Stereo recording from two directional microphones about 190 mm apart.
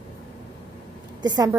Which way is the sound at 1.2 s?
20° right (ahead or behind).